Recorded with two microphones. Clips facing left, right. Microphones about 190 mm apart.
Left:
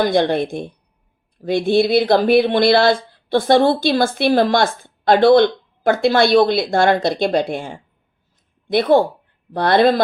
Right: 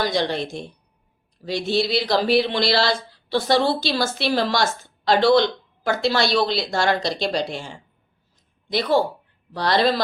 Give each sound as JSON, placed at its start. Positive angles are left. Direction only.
{"t": 0.0, "sound": "speech", "side_deg": 55}